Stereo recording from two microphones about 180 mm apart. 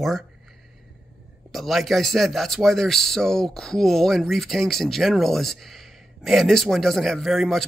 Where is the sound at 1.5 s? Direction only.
Centre (ahead or behind).